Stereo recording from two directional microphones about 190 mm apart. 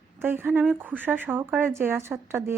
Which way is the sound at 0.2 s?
10° right (ahead or behind).